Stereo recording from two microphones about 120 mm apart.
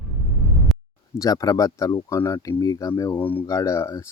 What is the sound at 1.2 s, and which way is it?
Speech, 30° left (ahead or behind).